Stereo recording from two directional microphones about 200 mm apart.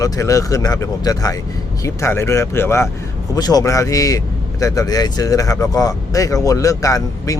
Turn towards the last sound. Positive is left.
turn(degrees=15)  # may be behind; listen again after turning